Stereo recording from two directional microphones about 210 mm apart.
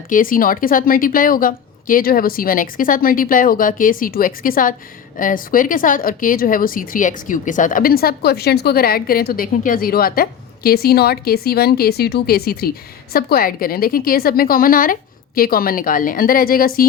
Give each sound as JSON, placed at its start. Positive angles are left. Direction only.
{"t": 0.1, "sound": "a woman's voice", "side_deg": 40}